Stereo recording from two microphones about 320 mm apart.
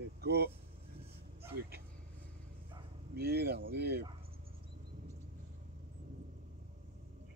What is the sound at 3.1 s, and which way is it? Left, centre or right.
Speech, right.